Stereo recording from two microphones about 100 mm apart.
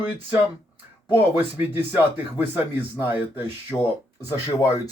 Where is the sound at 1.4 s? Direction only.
20° right (ahead or behind).